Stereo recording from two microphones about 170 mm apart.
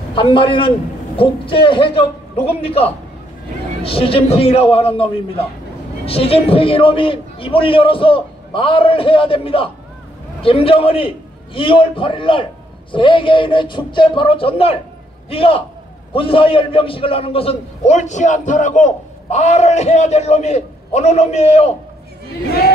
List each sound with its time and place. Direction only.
0.1 s a man's voice: 30° left (ahead or behind)